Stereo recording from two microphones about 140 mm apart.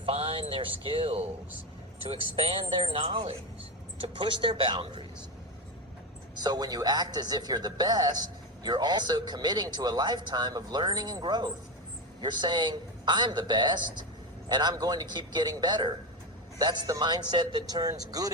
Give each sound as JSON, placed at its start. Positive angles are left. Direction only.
{"t": 0.0, "sound": "a man's voice", "side_deg": -45}
{"t": 6.4, "sound": "a man's voice", "side_deg": -30}